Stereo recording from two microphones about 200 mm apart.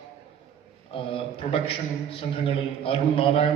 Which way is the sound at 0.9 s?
25° left (ahead or behind).